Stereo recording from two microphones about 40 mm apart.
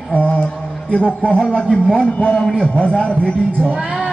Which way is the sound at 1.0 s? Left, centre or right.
Left.